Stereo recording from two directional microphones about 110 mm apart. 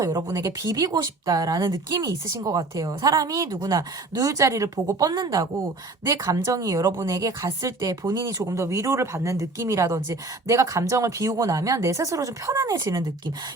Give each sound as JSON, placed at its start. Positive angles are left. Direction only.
{"t": 0.0, "sound": "speech", "side_deg": -35}